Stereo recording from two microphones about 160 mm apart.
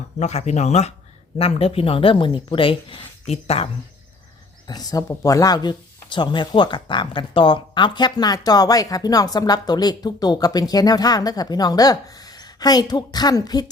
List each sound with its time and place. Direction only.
0.2 s speech: 45° left (ahead or behind)
4.7 s speech: 25° left (ahead or behind)